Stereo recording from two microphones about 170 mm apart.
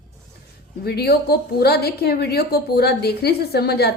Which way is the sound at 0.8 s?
70° left (ahead or behind).